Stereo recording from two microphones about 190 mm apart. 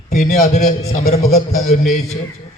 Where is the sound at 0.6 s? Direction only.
35° left (ahead or behind).